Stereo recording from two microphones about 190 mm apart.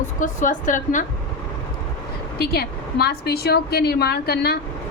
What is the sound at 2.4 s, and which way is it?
A woman's voice, 55° left (ahead or behind).